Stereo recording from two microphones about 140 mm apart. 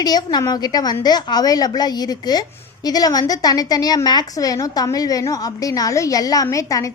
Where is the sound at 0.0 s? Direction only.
30° left (ahead or behind).